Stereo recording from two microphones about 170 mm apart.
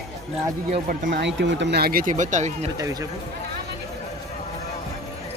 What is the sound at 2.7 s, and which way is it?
Speech, 20° right (ahead or behind).